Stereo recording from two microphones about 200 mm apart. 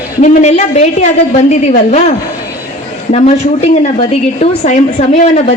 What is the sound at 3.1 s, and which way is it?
Speech, 30° left (ahead or behind).